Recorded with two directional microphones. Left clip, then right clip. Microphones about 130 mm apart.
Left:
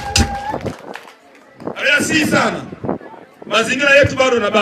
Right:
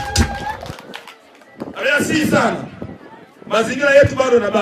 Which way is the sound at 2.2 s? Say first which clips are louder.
Left 1 dB; 20° left (ahead or behind).